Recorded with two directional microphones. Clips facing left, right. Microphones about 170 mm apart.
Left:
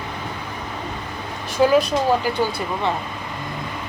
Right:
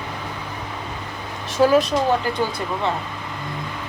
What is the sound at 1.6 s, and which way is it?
Speech, centre (ahead or behind).